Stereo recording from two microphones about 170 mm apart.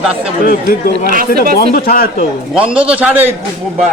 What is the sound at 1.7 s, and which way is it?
Speech, 60° left (ahead or behind).